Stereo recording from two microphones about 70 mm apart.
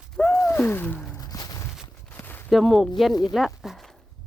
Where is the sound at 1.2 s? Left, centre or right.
Left.